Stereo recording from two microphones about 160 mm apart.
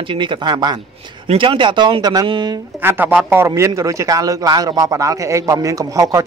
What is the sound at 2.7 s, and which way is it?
Speech, 10° right (ahead or behind).